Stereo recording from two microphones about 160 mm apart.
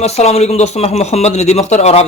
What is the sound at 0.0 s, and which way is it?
Speech, 40° left (ahead or behind).